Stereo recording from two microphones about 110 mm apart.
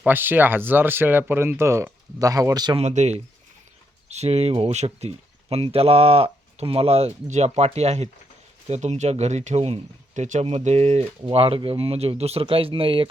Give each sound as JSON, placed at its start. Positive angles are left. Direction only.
{"t": 0.0, "sound": "speech", "side_deg": -15}
{"t": 2.7, "sound": "speech", "side_deg": -90}
{"t": 4.1, "sound": "speech", "side_deg": -75}
{"t": 11.3, "sound": "speech", "side_deg": -60}